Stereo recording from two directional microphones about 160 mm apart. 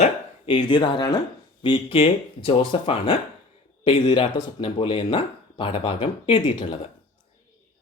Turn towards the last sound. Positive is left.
turn(degrees=35)  # may be behind; listen again after turning